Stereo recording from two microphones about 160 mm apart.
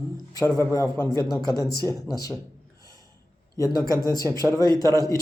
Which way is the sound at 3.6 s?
20° left (ahead or behind).